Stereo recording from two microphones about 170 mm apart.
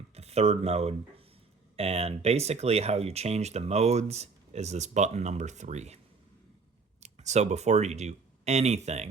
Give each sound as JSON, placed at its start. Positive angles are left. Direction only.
{"t": 0.1, "sound": "speech", "side_deg": -40}
{"t": 7.0, "sound": "speech", "side_deg": -40}